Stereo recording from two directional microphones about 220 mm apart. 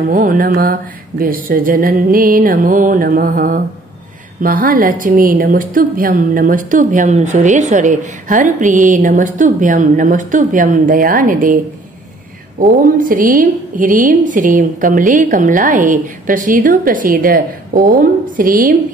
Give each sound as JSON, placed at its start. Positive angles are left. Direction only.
{"t": 0.0, "sound": "a woman's voice", "side_deg": -35}